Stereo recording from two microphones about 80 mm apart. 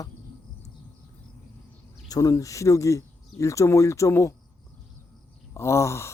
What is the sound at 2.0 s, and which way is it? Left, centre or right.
Speech, left.